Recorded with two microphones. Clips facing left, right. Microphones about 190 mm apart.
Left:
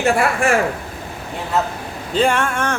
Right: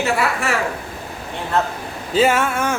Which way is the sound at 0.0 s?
50° left (ahead or behind).